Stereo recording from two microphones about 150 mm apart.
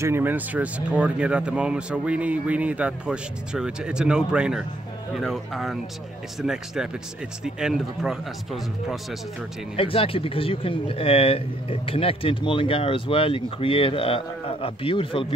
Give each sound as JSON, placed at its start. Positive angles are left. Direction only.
{"t": 0.0, "sound": "speech", "side_deg": -15}
{"t": 9.8, "sound": "speech", "side_deg": 40}